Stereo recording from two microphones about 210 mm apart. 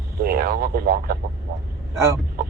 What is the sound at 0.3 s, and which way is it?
Speech, 45° right (ahead or behind).